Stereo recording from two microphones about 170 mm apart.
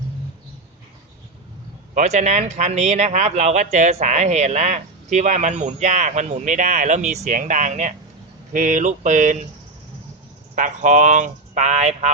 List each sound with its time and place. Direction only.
2.0 s speech: 45° right (ahead or behind)
10.5 s speech: 50° right (ahead or behind)